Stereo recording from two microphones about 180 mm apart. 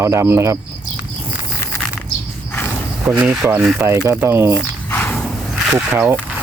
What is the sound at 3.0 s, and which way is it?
Speech, 10° right (ahead or behind).